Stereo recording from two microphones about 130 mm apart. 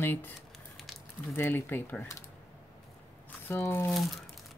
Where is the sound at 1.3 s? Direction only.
15° left (ahead or behind).